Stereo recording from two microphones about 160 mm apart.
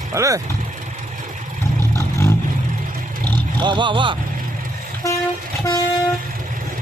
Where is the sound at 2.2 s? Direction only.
20° left (ahead or behind).